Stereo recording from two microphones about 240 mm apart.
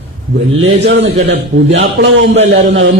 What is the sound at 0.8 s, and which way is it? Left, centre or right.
A man's voice, right.